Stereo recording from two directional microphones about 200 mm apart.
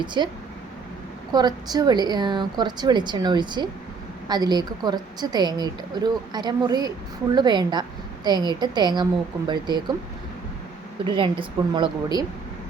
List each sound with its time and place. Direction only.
0.0 s a woman's voice: 25° right (ahead or behind)
1.3 s a woman's voice: 20° right (ahead or behind)
11.0 s a woman's voice: 25° right (ahead or behind)